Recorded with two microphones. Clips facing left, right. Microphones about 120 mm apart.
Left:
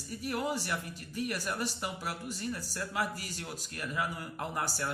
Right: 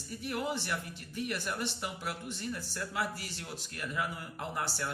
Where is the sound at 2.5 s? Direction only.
40° left (ahead or behind).